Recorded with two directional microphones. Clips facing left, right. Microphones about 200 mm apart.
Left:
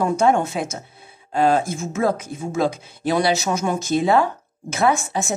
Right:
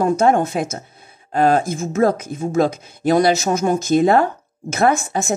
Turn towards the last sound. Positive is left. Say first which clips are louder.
# right 3 dB
turn(degrees=-40)  # may be behind; listen again after turning